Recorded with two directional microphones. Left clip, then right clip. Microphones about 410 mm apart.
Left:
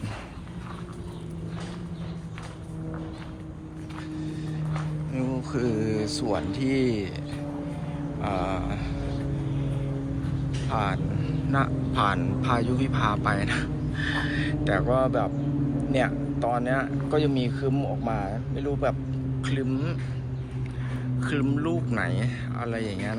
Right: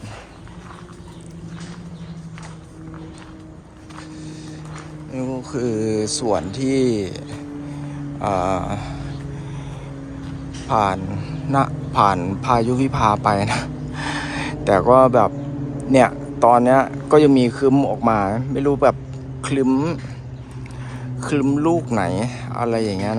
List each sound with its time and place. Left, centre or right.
5.1 s speech: centre
8.2 s speech: centre
10.7 s speech: centre
17.7 s speech: right
19.4 s speech: centre
21.2 s speech: centre